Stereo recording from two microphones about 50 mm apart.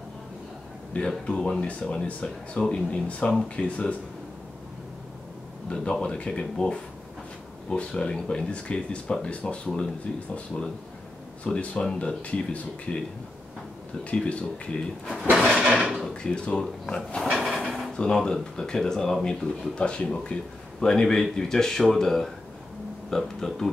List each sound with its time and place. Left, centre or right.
0.9 s speech: centre
5.7 s speech: centre
14.1 s speech: left
15.3 s drawer open or close: centre
16.1 s speech: centre
17.3 s a sound: centre
17.9 s speech: centre
20.8 s speech: centre